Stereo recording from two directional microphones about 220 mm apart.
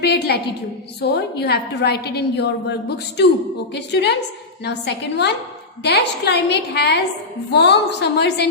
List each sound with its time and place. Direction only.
0.0 s a woman's voice: 50° left (ahead or behind)